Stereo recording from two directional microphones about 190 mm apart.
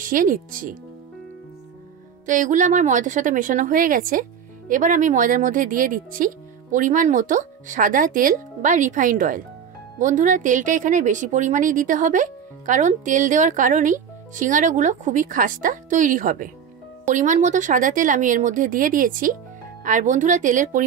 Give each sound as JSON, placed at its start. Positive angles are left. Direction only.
{"t": 0.0, "sound": "speech", "side_deg": -45}
{"t": 2.2, "sound": "speech", "side_deg": -45}